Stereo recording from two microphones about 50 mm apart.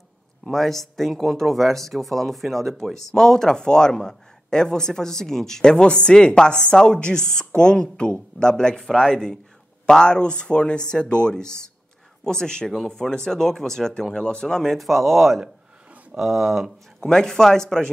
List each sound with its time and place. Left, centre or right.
0.5 s speech: centre
17.0 s speech: centre